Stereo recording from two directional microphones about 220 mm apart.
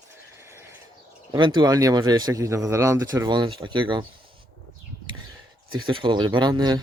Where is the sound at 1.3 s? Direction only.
20° right (ahead or behind).